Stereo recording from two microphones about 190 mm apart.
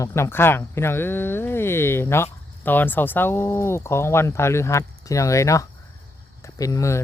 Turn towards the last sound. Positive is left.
turn(degrees=15)  # may be behind; listen again after turning